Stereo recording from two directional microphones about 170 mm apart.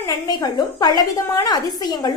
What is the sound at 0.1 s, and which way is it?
A woman's voice, 25° left (ahead or behind).